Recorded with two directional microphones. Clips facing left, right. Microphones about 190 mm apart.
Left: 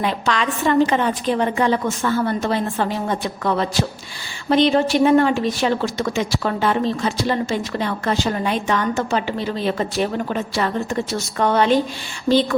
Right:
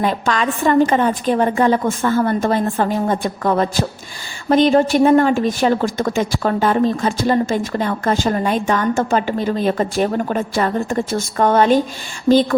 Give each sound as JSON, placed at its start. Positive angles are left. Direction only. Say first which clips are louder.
{"t": 0.0, "sound": "a woman's voice", "louder": "right 3 dB", "side_deg": -45}